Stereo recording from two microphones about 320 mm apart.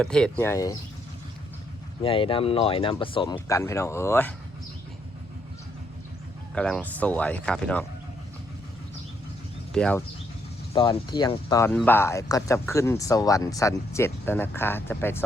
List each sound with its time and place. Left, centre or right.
0.0 s speech: centre
2.0 s speech: centre
6.5 s speech: centre
9.7 s speech: centre